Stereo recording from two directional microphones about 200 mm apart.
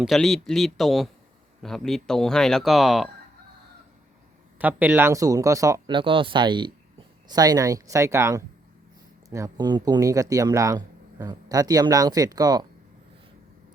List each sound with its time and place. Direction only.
0.0 s speech: centre (ahead or behind)
4.5 s speech: 10° right (ahead or behind)